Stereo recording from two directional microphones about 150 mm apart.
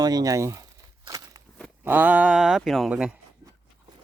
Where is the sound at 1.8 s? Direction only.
10° right (ahead or behind).